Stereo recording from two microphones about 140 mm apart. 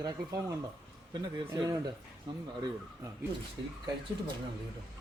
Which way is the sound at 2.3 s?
35° right (ahead or behind).